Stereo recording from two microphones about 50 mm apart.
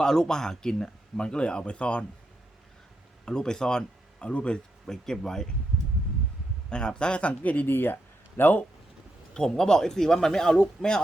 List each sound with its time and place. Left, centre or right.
0.0 s speech: centre
3.2 s speech: centre
4.9 s speech: centre
6.7 s a man's voice: centre
7.7 s speech: left
9.3 s speech: centre